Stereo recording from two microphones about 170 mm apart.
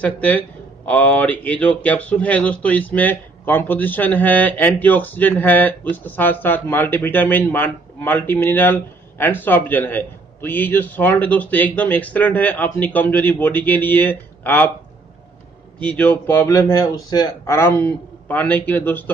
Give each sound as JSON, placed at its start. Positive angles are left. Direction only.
{"t": 0.0, "sound": "speech", "side_deg": 10}
{"t": 15.8, "sound": "speech", "side_deg": 10}